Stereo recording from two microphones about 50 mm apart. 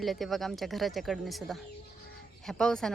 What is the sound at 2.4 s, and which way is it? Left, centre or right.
Speech, centre.